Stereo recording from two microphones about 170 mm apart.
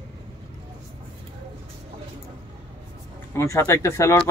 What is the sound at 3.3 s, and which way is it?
Speech, 15° left (ahead or behind).